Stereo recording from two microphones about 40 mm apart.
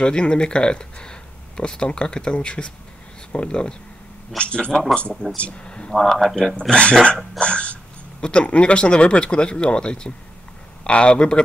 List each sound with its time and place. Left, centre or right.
0.0 s speech: left
5.9 s speech: centre
6.7 s speech: left